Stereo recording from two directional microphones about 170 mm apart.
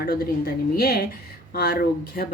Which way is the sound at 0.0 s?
60° left (ahead or behind).